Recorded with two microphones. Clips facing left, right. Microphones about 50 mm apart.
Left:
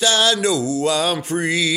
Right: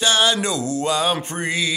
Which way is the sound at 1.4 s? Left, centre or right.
Right.